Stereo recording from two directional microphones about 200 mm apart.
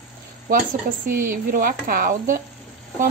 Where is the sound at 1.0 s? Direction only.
45° right (ahead or behind).